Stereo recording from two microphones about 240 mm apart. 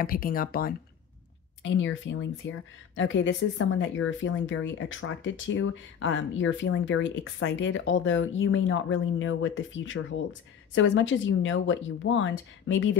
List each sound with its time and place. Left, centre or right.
0.0 s speech: left
1.6 s speech: left